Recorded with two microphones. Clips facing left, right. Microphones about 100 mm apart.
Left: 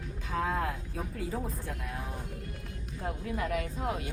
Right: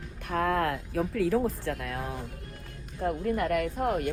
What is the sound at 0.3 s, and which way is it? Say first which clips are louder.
Speech: right 5 dB; 60° right (ahead or behind).